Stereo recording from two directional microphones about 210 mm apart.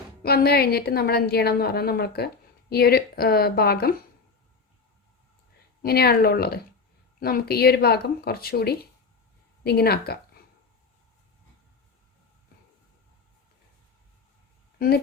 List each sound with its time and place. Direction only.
0.2 s a woman's voice: 45° left (ahead or behind)
5.8 s a woman's voice: 50° left (ahead or behind)